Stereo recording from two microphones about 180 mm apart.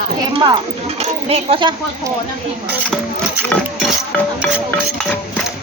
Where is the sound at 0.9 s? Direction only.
35° right (ahead or behind).